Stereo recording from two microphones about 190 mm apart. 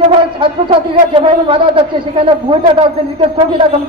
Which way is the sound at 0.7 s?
30° right (ahead or behind).